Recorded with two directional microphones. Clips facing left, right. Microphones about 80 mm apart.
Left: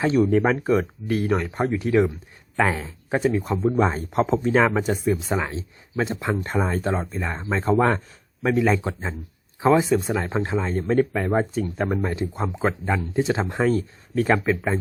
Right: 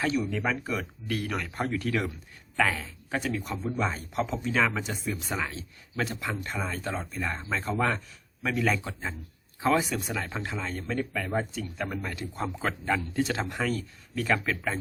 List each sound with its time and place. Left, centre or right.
0.1 s speech: left
1.0 s speech: left
6.4 s speech: left
7.2 s speech: left
14.5 s speech: left